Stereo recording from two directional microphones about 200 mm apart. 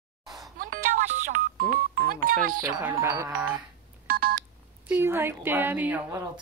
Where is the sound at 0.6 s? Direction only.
45° right (ahead or behind).